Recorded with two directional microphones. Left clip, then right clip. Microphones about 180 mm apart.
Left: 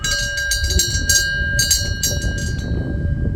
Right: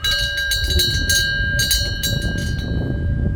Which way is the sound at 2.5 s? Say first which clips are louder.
Even; 10° left (ahead or behind).